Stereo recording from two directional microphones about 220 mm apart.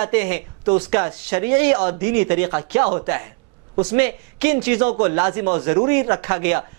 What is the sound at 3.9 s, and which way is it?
Speech, 15° right (ahead or behind).